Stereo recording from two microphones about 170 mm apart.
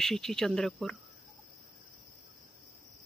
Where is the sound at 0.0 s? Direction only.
Centre (ahead or behind).